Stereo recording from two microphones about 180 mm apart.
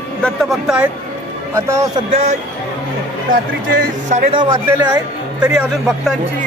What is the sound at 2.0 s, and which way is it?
Speech, 35° right (ahead or behind).